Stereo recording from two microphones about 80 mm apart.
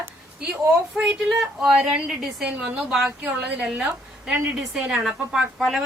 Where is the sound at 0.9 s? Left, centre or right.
Centre.